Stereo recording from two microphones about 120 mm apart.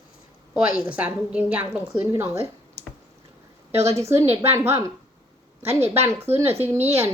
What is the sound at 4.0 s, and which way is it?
Speech, 25° right (ahead or behind).